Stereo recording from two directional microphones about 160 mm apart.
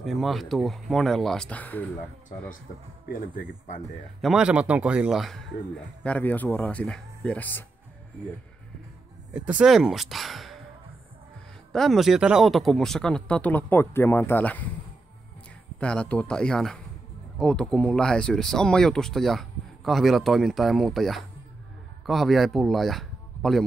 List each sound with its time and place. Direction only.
0.0 s speech: centre (ahead or behind)
3.1 s speech: 55° left (ahead or behind)
4.2 s speech: 5° right (ahead or behind)
6.0 s speech: 10° left (ahead or behind)
9.3 s speech: 10° right (ahead or behind)
11.7 s speech: centre (ahead or behind)
15.8 s speech: 5° left (ahead or behind)